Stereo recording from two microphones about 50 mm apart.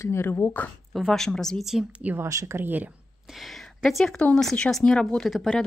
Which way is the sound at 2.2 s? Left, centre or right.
Right.